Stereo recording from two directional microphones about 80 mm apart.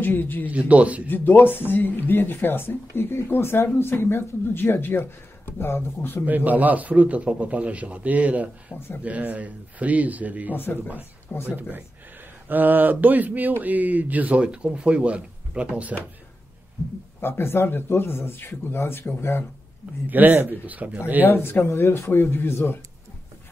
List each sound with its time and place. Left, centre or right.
0.0 s speech: left
0.5 s a man's voice: centre
1.0 s speech: left
6.2 s speech: right
8.7 s speech: left
9.0 s speech: centre
10.5 s speech: left
12.4 s speech: right
17.2 s speech: left
20.1 s speech: right
21.3 s speech: left